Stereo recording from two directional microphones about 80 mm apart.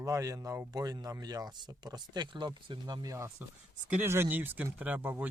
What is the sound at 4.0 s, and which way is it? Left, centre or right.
Speech, right.